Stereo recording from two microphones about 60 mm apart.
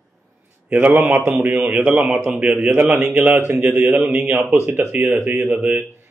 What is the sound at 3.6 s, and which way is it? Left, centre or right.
Speech, right.